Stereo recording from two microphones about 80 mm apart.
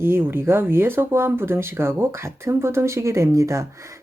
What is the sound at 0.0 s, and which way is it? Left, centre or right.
Speech, right.